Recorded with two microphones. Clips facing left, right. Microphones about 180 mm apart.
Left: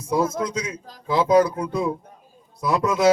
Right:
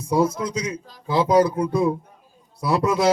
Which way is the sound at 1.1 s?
30° right (ahead or behind).